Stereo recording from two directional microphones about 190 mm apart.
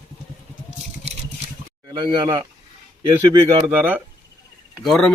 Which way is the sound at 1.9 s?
25° right (ahead or behind).